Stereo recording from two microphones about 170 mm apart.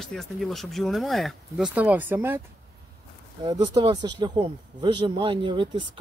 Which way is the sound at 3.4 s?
25° right (ahead or behind).